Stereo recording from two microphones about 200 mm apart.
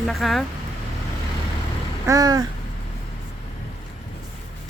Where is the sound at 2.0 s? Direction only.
20° right (ahead or behind).